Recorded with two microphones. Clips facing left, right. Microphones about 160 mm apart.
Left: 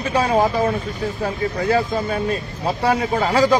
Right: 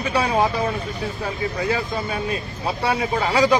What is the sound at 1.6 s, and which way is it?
Speech, 45° left (ahead or behind).